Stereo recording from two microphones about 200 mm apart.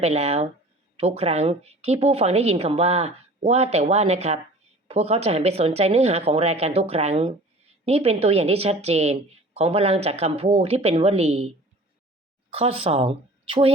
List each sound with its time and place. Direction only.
0.0 s speech: 30° right (ahead or behind)